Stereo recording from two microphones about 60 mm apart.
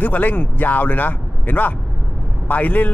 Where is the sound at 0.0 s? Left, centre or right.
Left.